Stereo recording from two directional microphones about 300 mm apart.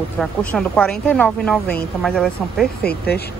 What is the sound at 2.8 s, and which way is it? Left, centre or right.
Speech, left.